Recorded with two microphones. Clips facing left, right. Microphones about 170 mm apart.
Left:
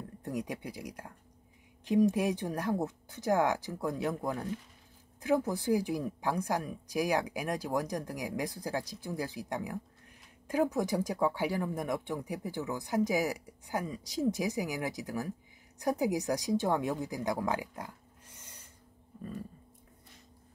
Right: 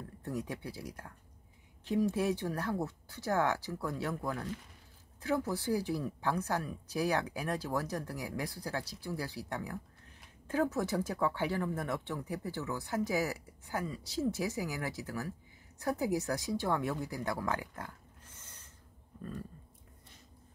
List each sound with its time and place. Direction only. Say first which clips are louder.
0.2 s a woman's voice: left 2 dB; 15° left (ahead or behind)